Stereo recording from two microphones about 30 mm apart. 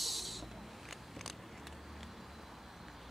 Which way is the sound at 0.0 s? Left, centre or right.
Centre.